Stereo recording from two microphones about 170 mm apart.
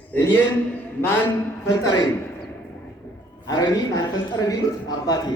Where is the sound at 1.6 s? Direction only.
20° left (ahead or behind).